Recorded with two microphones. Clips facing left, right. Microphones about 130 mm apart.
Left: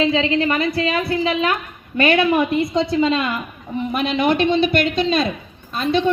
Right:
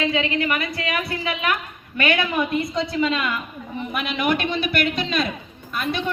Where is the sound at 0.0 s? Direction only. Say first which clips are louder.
Left 5 dB; 30° left (ahead or behind).